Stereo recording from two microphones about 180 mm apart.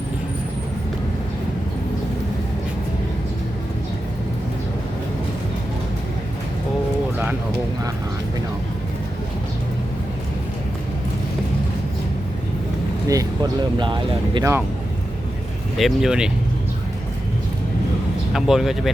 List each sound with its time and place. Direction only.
13.1 s speech: 20° right (ahead or behind)
15.8 s speech: 5° right (ahead or behind)
18.3 s speech: centre (ahead or behind)